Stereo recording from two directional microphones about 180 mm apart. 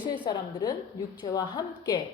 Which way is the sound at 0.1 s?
25° left (ahead or behind).